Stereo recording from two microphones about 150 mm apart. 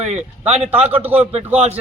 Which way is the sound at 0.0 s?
50° right (ahead or behind).